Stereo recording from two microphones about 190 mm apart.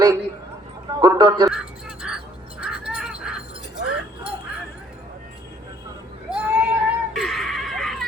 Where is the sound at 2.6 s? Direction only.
5° right (ahead or behind).